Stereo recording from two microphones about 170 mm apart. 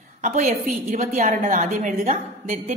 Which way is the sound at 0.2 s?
55° right (ahead or behind).